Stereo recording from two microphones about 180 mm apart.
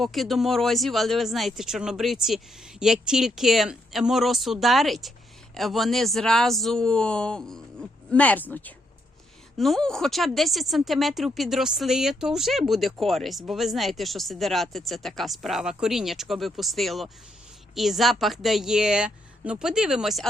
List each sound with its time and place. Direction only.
0.0 s speech: centre (ahead or behind)